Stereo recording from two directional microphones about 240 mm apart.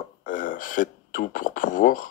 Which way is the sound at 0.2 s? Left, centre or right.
Left.